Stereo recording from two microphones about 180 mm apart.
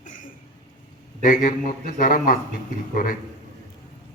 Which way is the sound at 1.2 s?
50° left (ahead or behind).